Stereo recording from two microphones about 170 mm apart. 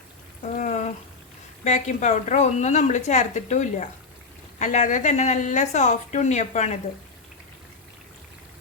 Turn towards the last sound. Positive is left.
turn(degrees=40)  # may be behind; listen again after turning